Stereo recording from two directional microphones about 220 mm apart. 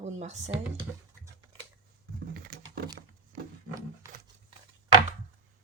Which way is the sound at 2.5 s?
40° right (ahead or behind).